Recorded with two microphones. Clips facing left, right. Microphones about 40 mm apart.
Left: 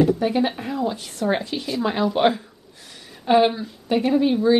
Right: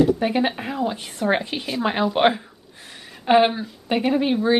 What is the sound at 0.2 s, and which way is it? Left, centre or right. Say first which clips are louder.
Speech: even; right.